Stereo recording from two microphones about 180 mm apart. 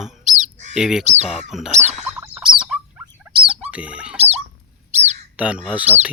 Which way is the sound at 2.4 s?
30° right (ahead or behind).